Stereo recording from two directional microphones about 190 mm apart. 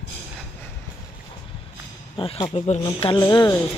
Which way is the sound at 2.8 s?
25° left (ahead or behind).